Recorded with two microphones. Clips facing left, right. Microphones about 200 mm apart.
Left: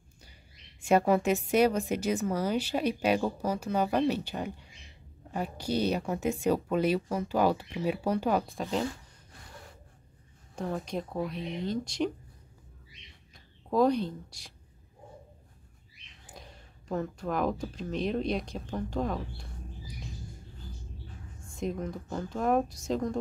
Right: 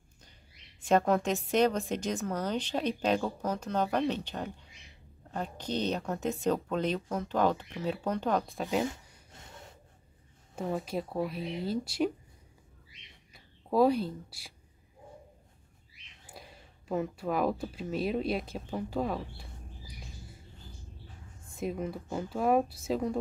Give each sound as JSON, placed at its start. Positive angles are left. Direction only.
{"t": 0.7, "sound": "a woman's voice", "side_deg": 10}
{"t": 8.8, "sound": "a sound", "side_deg": -25}
{"t": 10.5, "sound": "speech", "side_deg": -5}
{"t": 13.3, "sound": "speech", "side_deg": -5}
{"t": 16.3, "sound": "speech", "side_deg": -5}
{"t": 21.5, "sound": "speech", "side_deg": -5}